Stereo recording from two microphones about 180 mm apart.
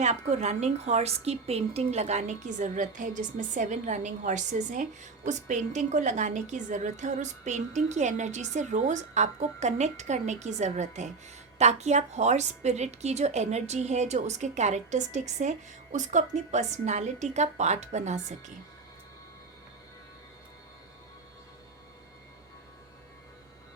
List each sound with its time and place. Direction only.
0.0 s a woman's voice: 40° right (ahead or behind)